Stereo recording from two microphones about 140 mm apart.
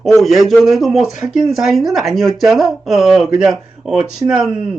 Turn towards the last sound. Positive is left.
turn(degrees=-5)  # may be behind; listen again after turning